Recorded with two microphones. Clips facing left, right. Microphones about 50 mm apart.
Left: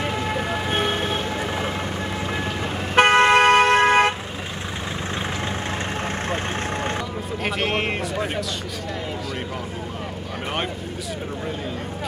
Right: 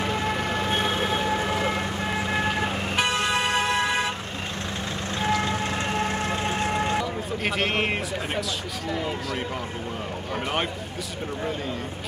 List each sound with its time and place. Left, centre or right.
0.0 s emergency vehicle: centre
0.8 s siren: centre
1.4 s vehicle: centre
3.0 s vehicle: left
5.9 s vehicle: left
7.4 s a sound: centre